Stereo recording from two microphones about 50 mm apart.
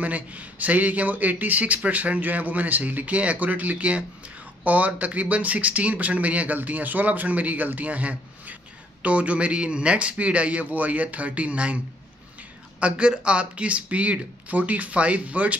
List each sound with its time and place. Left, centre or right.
0.0 s speech: right
12.8 s speech: centre